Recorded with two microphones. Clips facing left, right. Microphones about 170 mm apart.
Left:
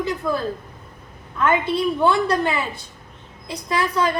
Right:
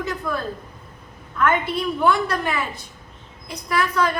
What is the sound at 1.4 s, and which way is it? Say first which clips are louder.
A woman's voice: left 2 dB; 20° left (ahead or behind).